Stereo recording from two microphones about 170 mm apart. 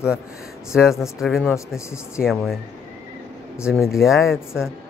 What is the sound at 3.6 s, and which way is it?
Speech, 5° right (ahead or behind).